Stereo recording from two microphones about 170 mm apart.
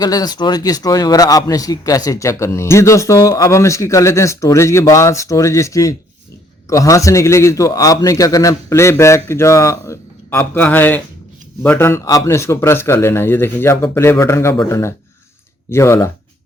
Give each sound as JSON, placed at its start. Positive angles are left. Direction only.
{"t": 0.0, "sound": "a man's voice", "side_deg": 20}